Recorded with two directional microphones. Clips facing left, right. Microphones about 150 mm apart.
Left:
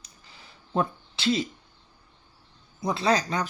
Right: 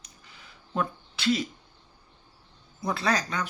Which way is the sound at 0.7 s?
30° left (ahead or behind).